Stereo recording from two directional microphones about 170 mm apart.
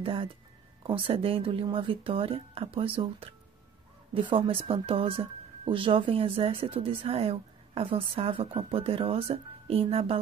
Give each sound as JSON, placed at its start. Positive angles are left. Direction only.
{"t": 0.0, "sound": "speech", "side_deg": -30}